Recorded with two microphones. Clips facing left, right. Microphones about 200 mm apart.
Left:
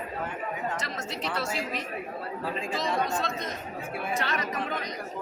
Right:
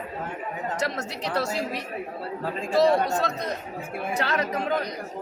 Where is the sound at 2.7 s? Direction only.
65° right (ahead or behind).